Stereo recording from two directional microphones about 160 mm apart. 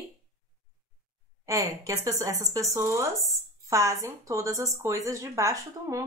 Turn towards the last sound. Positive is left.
turn(degrees=-20)  # may be behind; listen again after turning